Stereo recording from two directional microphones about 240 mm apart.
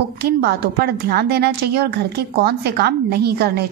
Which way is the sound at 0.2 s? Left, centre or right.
Right.